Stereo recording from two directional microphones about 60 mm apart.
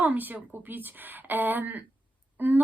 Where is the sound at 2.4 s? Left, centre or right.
Right.